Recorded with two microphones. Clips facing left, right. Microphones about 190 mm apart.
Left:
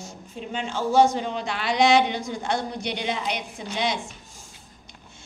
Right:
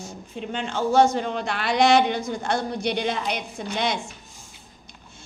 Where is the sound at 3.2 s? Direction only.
55° right (ahead or behind).